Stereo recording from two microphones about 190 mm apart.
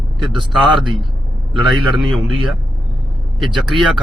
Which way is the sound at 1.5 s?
Centre (ahead or behind).